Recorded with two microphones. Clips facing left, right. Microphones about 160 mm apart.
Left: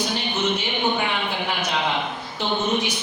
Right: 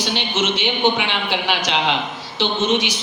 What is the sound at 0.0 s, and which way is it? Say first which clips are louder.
A man's voice: right 2 dB; 90° right.